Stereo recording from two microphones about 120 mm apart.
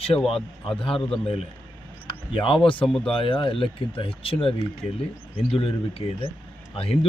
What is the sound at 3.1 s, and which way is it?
Speech, 45° left (ahead or behind).